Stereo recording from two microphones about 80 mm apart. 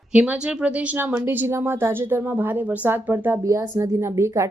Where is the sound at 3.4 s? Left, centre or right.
Right.